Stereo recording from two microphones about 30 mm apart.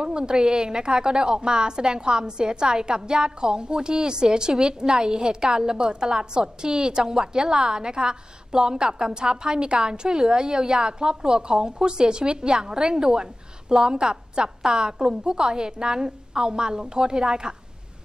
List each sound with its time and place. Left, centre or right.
0.0 s a woman's voice: right